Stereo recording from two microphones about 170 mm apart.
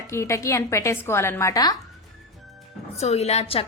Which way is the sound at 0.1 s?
15° left (ahead or behind).